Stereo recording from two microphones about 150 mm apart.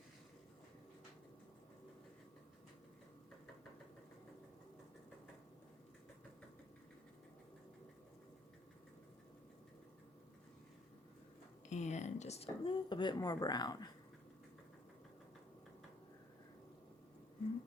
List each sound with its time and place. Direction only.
11.7 s speech: 50° left (ahead or behind); by 13.9 s 25° left (ahead or behind)